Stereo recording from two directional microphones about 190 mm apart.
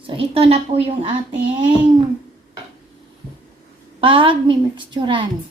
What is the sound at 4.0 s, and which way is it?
A woman's voice, 25° right (ahead or behind).